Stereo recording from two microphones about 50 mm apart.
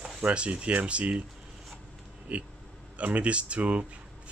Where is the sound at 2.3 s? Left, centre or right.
Right.